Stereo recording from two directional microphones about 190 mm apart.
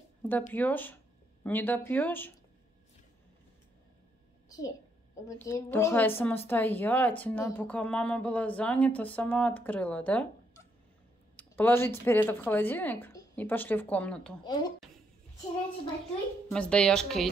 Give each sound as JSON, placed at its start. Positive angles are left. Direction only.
{"t": 0.2, "sound": "a woman's voice", "side_deg": 10}
{"t": 5.4, "sound": "a woman's voice", "side_deg": 15}
{"t": 14.4, "sound": "speech", "side_deg": 20}
{"t": 16.4, "sound": "a woman's voice", "side_deg": 5}